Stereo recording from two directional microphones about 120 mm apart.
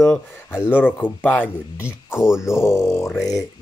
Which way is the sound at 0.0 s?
5° left (ahead or behind).